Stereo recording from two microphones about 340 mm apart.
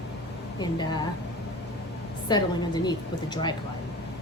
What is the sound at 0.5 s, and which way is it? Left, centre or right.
Speech, centre.